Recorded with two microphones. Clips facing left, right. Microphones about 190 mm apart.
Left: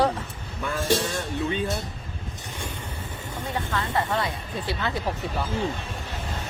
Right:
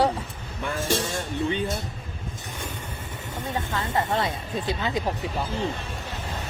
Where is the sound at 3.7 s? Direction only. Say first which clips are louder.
Even; 25° right (ahead or behind).